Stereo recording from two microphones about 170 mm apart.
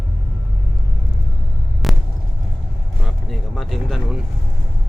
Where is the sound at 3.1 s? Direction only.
Centre (ahead or behind).